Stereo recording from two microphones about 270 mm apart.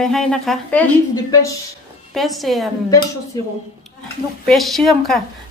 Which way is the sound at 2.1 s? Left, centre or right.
Centre.